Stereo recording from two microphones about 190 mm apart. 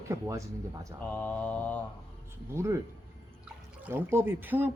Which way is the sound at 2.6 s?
15° right (ahead or behind).